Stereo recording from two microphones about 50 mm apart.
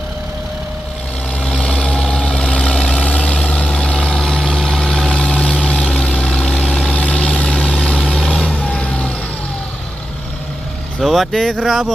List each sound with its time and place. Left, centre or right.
1.4 s vehicle: centre
5.0 s vehicle: centre
11.0 s vehicle: centre
11.3 s speech: centre
11.6 s speech: centre